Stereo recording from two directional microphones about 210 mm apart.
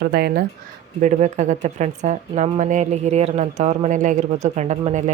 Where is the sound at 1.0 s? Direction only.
35° right (ahead or behind).